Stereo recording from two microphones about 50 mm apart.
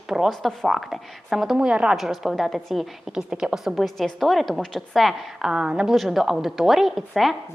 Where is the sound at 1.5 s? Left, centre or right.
Centre.